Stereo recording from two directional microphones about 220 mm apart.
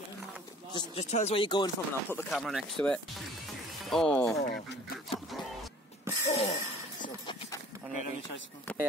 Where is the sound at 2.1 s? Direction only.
Centre (ahead or behind).